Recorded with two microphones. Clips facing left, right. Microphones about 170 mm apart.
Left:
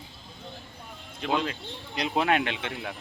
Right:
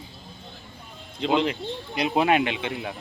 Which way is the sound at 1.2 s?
20° right (ahead or behind).